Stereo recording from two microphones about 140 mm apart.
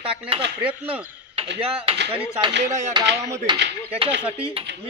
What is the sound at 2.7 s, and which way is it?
Speech, 60° right (ahead or behind).